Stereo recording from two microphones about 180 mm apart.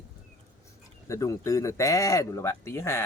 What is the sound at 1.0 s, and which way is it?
Speech, 15° left (ahead or behind).